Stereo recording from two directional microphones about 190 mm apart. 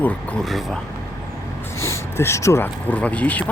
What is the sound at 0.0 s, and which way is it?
Speech, centre (ahead or behind).